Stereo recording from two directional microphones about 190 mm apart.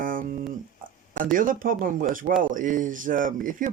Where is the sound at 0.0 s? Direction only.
45° right (ahead or behind).